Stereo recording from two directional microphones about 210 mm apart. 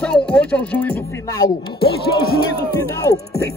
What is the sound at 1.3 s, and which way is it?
Speech, 20° left (ahead or behind).